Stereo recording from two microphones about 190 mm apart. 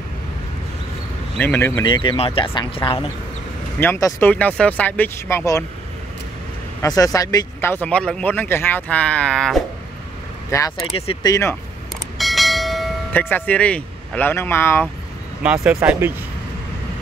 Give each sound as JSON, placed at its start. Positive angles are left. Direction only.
{"t": 1.4, "sound": "speech", "side_deg": 10}
{"t": 1.9, "sound": "speech", "side_deg": 25}
{"t": 3.8, "sound": "speech", "side_deg": 10}
{"t": 6.8, "sound": "speech", "side_deg": 20}
{"t": 10.5, "sound": "speech", "side_deg": 15}
{"t": 11.0, "sound": "speech", "side_deg": 30}
{"t": 12.2, "sound": "train", "side_deg": 0}
{"t": 13.2, "sound": "speech", "side_deg": 10}
{"t": 15.4, "sound": "speech", "side_deg": -5}